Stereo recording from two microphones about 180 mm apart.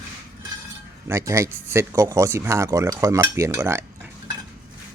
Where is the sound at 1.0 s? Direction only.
15° right (ahead or behind).